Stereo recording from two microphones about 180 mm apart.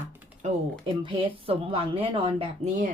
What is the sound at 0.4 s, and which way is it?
Speech, 40° right (ahead or behind).